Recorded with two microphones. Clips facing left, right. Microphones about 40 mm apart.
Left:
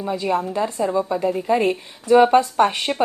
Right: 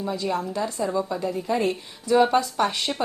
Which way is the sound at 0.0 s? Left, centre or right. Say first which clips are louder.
Left 4 dB; left.